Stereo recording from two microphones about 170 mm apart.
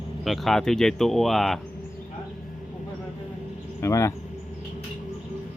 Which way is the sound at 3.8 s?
15° left (ahead or behind).